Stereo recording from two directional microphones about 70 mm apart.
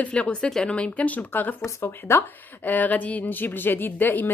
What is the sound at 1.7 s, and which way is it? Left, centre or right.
Speech, left.